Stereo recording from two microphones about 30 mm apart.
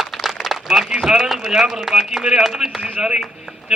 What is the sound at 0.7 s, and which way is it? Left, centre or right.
A man's voice, centre.